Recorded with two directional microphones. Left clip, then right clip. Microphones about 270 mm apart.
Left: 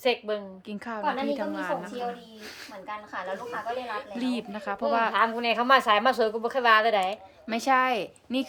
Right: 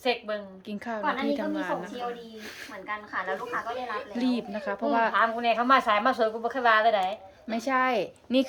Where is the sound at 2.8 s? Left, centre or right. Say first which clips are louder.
Right 3 dB; left.